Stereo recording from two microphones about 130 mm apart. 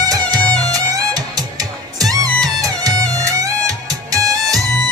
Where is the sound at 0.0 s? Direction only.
30° right (ahead or behind).